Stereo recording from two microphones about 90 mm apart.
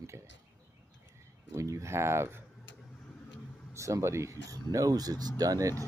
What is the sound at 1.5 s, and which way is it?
Speech, 35° right (ahead or behind).